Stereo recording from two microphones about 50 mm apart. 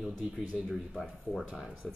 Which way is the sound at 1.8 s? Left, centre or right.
Centre.